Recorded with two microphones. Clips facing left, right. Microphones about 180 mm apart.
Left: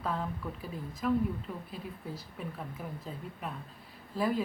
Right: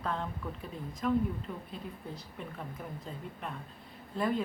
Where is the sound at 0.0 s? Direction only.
5° left (ahead or behind).